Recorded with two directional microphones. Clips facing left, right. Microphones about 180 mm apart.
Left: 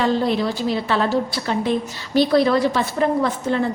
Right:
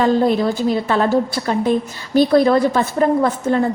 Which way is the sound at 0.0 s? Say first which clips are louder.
Right 4 dB; 50° right (ahead or behind).